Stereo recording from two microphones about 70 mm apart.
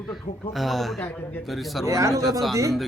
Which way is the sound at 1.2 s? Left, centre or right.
Left.